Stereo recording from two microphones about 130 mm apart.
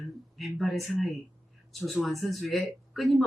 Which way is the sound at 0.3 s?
Centre (ahead or behind).